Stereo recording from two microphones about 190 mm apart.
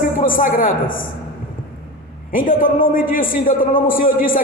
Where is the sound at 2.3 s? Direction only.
45° left (ahead or behind).